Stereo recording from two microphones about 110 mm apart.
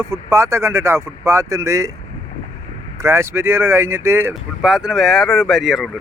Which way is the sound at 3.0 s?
25° right (ahead or behind).